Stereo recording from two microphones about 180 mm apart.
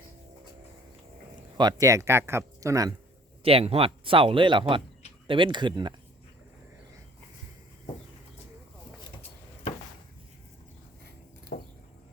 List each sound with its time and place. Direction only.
1.5 s speech: 20° right (ahead or behind)
3.4 s speech: 35° right (ahead or behind)
11.5 s a sound: 55° left (ahead or behind)